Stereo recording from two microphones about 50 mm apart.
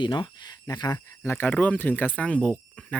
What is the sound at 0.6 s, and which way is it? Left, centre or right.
Speech, left.